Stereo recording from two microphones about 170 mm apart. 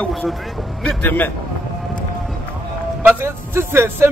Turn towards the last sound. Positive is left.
turn(degrees=-15)  # may be behind; listen again after turning